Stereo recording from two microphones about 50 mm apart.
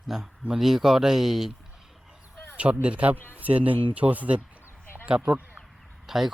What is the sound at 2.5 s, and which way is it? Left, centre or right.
Speech, right.